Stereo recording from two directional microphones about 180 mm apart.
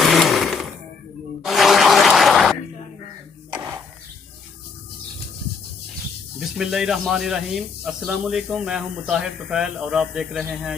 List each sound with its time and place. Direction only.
0.0 s blender: centre (ahead or behind)
1.4 s a sound: centre (ahead or behind)
6.6 s speech: centre (ahead or behind)